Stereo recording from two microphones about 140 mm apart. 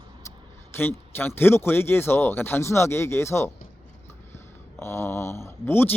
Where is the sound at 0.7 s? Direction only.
15° left (ahead or behind).